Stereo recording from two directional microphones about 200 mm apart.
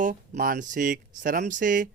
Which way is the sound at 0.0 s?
45° right (ahead or behind).